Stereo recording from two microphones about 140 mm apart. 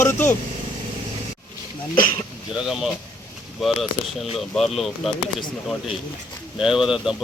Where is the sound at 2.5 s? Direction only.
5° right (ahead or behind).